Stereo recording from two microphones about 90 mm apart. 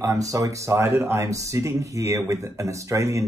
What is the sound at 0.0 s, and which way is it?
Speech, 35° right (ahead or behind).